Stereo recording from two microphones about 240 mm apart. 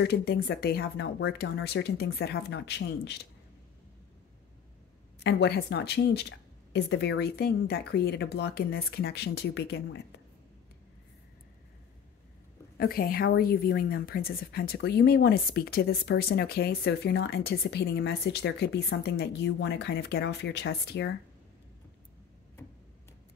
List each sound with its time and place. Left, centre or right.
0.0 s a woman's voice: left
5.2 s a woman's voice: left
12.7 s a woman's voice: left